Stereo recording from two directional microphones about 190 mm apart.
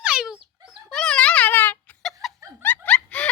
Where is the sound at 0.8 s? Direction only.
5° left (ahead or behind).